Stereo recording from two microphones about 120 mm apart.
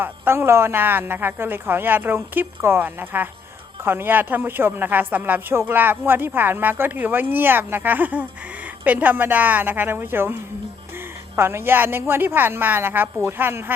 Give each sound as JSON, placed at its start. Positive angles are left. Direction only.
{"t": 0.0, "sound": "a woman's voice", "side_deg": -20}